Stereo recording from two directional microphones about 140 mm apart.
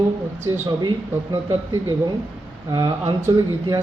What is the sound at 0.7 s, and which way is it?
A man's voice, 30° right (ahead or behind).